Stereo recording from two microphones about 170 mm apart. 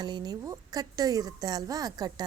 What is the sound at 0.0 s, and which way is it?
A woman's voice, 25° right (ahead or behind).